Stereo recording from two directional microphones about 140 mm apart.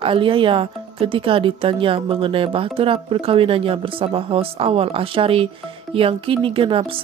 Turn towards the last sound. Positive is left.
turn(degrees=-40)  # may be behind; listen again after turning